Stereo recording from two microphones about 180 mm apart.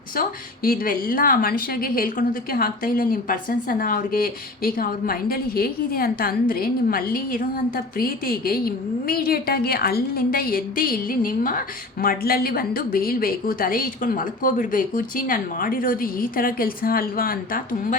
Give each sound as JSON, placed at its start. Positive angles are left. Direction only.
{"t": 0.2, "sound": "speech", "side_deg": 55}